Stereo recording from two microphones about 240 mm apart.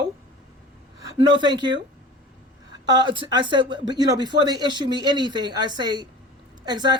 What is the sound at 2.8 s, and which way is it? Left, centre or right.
Speech, centre.